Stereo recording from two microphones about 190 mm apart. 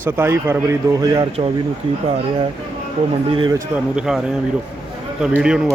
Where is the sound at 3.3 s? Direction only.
25° right (ahead or behind).